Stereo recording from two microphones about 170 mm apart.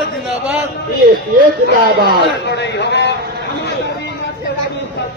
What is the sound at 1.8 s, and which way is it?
Speech, 65° right (ahead or behind).